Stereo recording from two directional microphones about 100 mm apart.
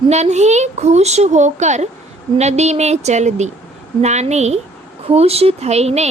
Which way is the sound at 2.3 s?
90° right.